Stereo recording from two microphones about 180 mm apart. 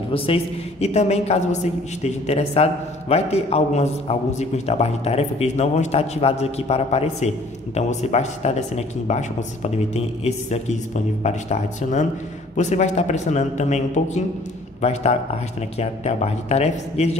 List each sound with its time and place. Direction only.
0.1 s a woman's voice: 35° left (ahead or behind)